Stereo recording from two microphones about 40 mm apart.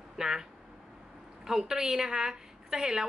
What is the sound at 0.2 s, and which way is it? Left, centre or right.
A woman's voice, centre.